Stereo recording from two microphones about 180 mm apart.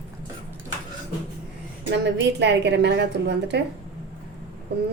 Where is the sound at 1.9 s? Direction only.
75° right (ahead or behind).